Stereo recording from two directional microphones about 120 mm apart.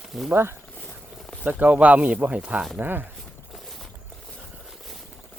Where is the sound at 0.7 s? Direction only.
15° left (ahead or behind).